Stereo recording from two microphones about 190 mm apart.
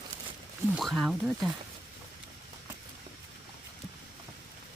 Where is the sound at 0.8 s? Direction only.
Centre (ahead or behind).